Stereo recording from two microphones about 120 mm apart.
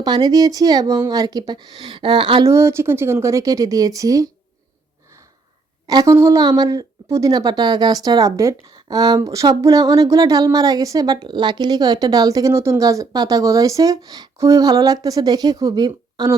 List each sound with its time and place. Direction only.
0.0 s speech: 35° right (ahead or behind)
2.4 s speech: 25° right (ahead or behind)
5.9 s speech: 25° right (ahead or behind)